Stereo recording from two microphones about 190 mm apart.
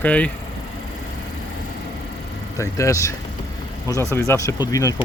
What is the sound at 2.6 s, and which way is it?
Speech, 15° left (ahead or behind).